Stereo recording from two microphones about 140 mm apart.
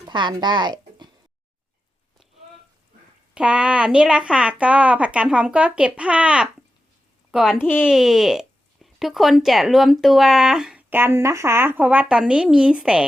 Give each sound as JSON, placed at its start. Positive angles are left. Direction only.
{"t": 0.1, "sound": "speech", "side_deg": -30}
{"t": 3.3, "sound": "speech", "side_deg": -5}
{"t": 7.3, "sound": "a sound", "side_deg": -5}
{"t": 7.6, "sound": "speech", "side_deg": 15}
{"t": 7.9, "sound": "speech", "side_deg": -5}